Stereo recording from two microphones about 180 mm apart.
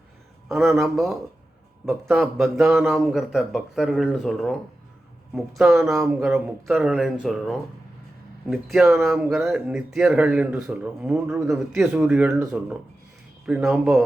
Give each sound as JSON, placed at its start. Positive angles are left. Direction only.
{"t": 0.4, "sound": "speech", "side_deg": 0}
{"t": 8.7, "sound": "speech", "side_deg": 0}
{"t": 11.3, "sound": "a man's voice", "side_deg": -15}
{"t": 11.7, "sound": "speech", "side_deg": 0}
{"t": 13.4, "sound": "speech", "side_deg": -5}